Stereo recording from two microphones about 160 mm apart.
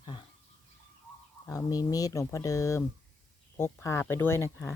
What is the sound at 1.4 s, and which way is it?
A woman's voice, 20° left (ahead or behind).